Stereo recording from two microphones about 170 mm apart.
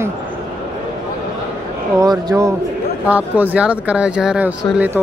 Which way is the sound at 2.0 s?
20° right (ahead or behind).